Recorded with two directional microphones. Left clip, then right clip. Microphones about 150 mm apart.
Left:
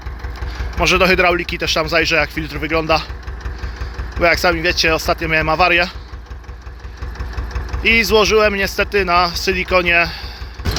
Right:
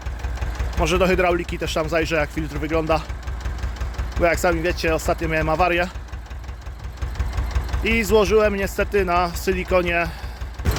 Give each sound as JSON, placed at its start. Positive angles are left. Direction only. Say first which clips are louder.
{"t": 0.8, "sound": "speech", "louder": "left 6 dB", "side_deg": -15}
{"t": 4.2, "sound": "speech", "louder": "left 5 dB", "side_deg": -20}
{"t": 7.8, "sound": "speech", "louder": "left 6 dB", "side_deg": -20}